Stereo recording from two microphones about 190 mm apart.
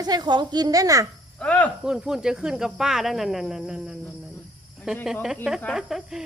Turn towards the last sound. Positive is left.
turn(degrees=0)  # may be behind; listen again after turning